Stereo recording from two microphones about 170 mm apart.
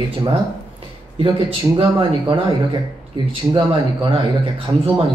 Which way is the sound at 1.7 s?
30° right (ahead or behind).